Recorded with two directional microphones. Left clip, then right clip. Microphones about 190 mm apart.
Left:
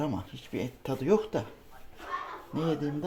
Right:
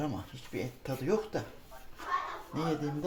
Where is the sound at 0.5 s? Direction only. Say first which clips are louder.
Left 3 dB; 50° left (ahead or behind).